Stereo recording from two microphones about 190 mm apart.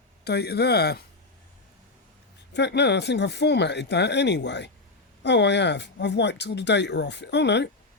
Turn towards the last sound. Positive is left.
turn(degrees=65)  # may be behind; listen again after turning